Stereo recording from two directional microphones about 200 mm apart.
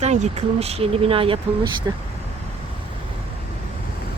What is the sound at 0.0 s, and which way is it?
Speech, 35° right (ahead or behind).